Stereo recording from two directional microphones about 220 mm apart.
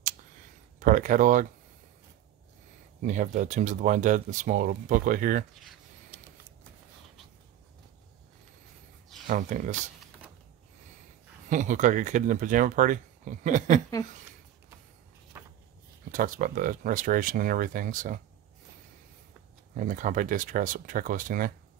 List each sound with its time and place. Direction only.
0.7 s speech: 35° right (ahead or behind)
3.0 s speech: 35° right (ahead or behind)
5.6 s a sound: centre (ahead or behind)
9.3 s speech: 35° right (ahead or behind)
11.4 s speech: 35° right (ahead or behind)
15.3 s a sound: 10° right (ahead or behind)
16.1 s speech: 40° right (ahead or behind)
19.7 s speech: 35° right (ahead or behind)